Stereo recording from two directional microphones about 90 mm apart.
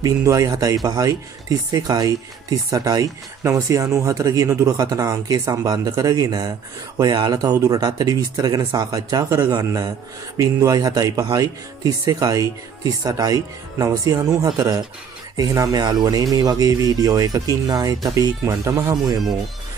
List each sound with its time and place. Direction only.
0.0 s speech: 40° right (ahead or behind)
15.7 s speech: 50° right (ahead or behind)